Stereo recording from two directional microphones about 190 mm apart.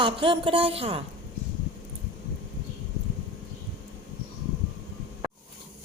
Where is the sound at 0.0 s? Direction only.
25° right (ahead or behind).